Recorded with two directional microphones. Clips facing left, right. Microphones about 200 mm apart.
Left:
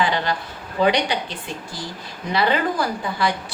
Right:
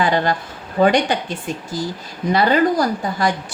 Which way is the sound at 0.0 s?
50° right (ahead or behind).